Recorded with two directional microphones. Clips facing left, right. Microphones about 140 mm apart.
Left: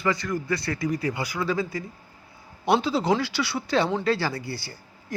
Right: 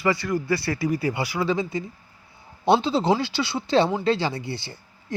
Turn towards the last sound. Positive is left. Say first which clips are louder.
# right 2 dB
turn(degrees=-20)  # may be behind; listen again after turning